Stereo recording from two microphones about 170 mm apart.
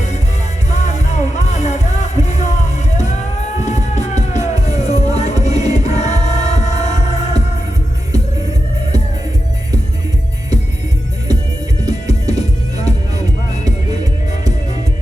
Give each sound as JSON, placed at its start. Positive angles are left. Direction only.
{"t": 0.7, "sound": "music", "side_deg": 40}
{"t": 11.9, "sound": "music", "side_deg": 40}